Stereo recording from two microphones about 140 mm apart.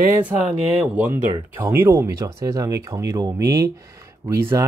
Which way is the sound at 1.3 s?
20° right (ahead or behind).